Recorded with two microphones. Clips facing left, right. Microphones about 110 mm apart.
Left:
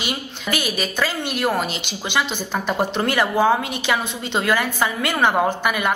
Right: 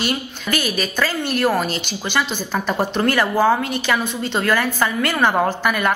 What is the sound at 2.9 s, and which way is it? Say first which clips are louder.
A woman's voice: right 3 dB; 20° left (ahead or behind).